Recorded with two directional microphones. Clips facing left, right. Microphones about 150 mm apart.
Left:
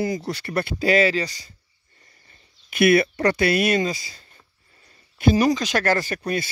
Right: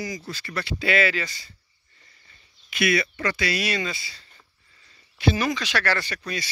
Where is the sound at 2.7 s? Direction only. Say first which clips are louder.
Left 7 dB; 55° left (ahead or behind).